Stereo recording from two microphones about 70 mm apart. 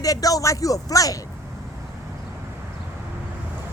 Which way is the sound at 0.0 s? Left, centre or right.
Left.